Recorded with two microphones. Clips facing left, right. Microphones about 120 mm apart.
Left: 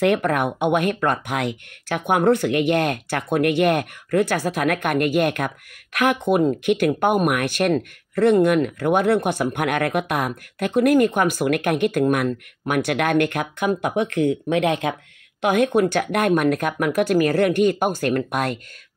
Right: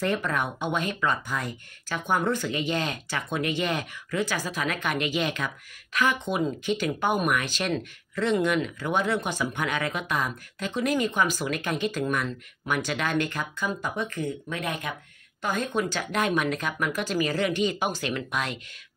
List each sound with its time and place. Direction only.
0.0 s speech: 65° left (ahead or behind); by 15.0 s 90° left
15.4 s speech: 70° left (ahead or behind); by 18.6 s 50° left (ahead or behind)